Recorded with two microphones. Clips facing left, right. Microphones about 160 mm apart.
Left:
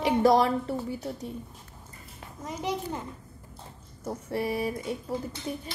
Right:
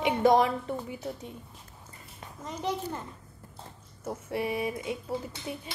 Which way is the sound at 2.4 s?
10° left (ahead or behind).